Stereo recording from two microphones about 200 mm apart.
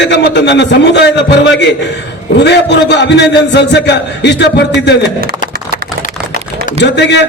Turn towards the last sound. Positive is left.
turn(degrees=60)  # may be behind; listen again after turning